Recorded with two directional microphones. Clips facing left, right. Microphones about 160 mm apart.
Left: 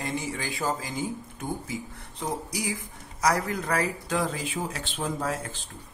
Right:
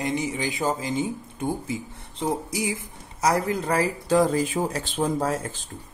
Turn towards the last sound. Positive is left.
turn(degrees=-40)  # may be behind; listen again after turning